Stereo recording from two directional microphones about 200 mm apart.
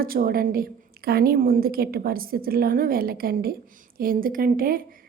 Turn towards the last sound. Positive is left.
turn(degrees=-45)  # may be behind; listen again after turning